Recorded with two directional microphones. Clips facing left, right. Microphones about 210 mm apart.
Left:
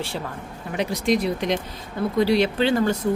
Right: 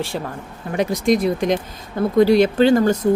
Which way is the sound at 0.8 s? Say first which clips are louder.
Right 4 dB; 45° right (ahead or behind).